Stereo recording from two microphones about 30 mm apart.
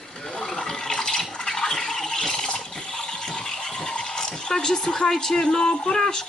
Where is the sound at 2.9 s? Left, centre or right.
Left.